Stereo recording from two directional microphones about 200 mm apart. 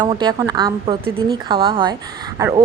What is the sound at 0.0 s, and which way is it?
A woman's voice, 20° right (ahead or behind).